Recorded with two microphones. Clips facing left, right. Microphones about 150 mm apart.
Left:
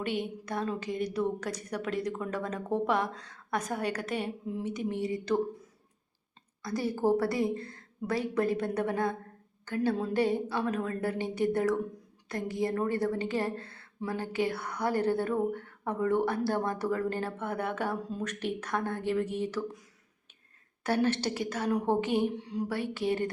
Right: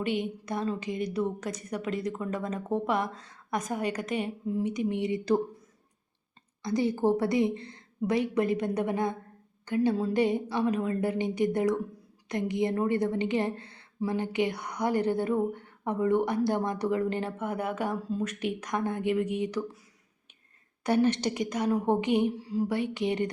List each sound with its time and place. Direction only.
0.2 s a woman's voice: 10° right (ahead or behind)
4.9 s speech: 25° right (ahead or behind)
6.7 s a woman's voice: 15° right (ahead or behind)
20.8 s a woman's voice: 15° right (ahead or behind)